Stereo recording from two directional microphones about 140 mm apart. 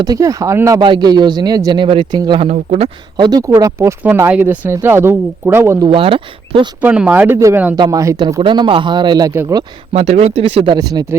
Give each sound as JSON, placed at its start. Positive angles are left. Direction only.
{"t": 0.0, "sound": "speech", "side_deg": -25}
{"t": 0.8, "sound": "a man's voice", "side_deg": -35}
{"t": 2.5, "sound": "speech", "side_deg": -45}
{"t": 3.2, "sound": "speech", "side_deg": -30}
{"t": 5.9, "sound": "a man's voice", "side_deg": -40}
{"t": 6.8, "sound": "speech", "side_deg": -10}
{"t": 7.8, "sound": "speech", "side_deg": -25}
{"t": 8.4, "sound": "a man's voice", "side_deg": -40}
{"t": 9.9, "sound": "a man's voice", "side_deg": -50}